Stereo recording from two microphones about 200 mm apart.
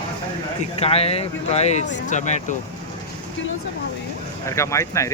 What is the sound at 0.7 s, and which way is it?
Speech, 30° left (ahead or behind).